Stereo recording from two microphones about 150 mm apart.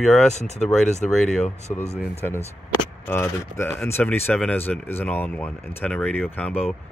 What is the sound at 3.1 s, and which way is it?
Speech, 15° left (ahead or behind).